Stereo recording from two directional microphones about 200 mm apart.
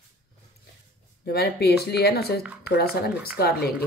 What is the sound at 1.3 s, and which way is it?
Speech, 50° left (ahead or behind).